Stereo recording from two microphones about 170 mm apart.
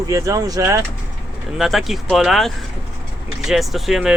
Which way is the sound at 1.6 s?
Centre (ahead or behind).